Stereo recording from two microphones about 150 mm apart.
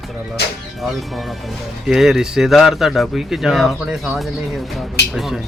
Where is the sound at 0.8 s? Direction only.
Centre (ahead or behind).